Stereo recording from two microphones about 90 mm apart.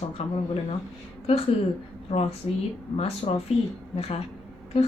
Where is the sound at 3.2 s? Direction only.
90° left.